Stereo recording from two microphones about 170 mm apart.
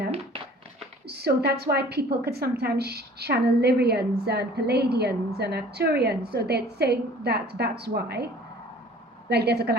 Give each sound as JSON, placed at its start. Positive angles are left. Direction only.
{"t": 1.0, "sound": "a woman's voice", "side_deg": -70}
{"t": 9.3, "sound": "a woman's voice", "side_deg": -75}